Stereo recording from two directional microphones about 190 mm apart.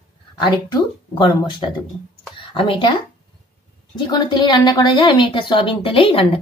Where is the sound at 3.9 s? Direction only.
25° left (ahead or behind).